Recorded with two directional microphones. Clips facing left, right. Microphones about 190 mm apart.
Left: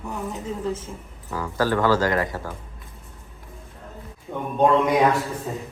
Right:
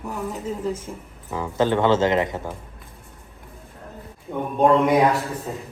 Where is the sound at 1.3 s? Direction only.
20° right (ahead or behind).